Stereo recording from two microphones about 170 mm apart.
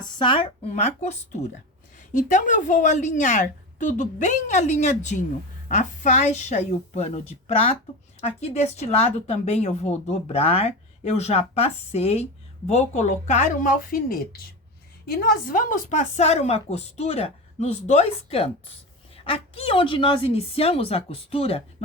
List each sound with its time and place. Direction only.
0.2 s a woman's voice: 30° left (ahead or behind)